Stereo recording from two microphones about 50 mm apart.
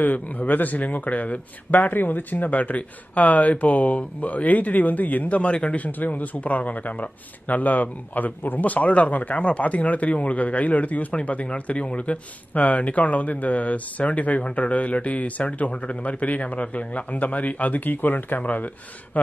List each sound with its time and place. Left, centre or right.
0.0 s speech: left
5.9 s speech: left